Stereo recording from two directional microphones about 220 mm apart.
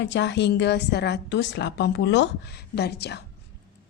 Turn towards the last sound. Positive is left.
turn(degrees=50)  # may be behind; listen again after turning